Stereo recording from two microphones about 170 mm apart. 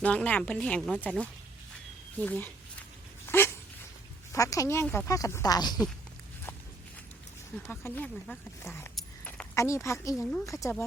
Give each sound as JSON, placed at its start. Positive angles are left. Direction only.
{"t": 0.0, "sound": "speech", "side_deg": 5}
{"t": 2.2, "sound": "a sound", "side_deg": 10}
{"t": 3.2, "sound": "dog", "side_deg": 15}
{"t": 4.3, "sound": "speech", "side_deg": 20}
{"t": 7.5, "sound": "speech", "side_deg": 10}
{"t": 9.0, "sound": "keys jangling", "side_deg": 5}
{"t": 9.6, "sound": "speech", "side_deg": 15}